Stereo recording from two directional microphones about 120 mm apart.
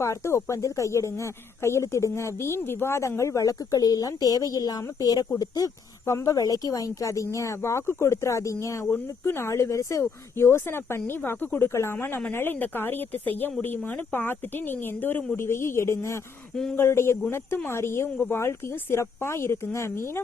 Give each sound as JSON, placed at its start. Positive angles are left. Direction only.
{"t": 0.0, "sound": "speech", "side_deg": 25}